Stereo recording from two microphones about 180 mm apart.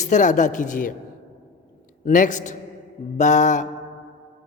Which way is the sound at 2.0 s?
45° left (ahead or behind).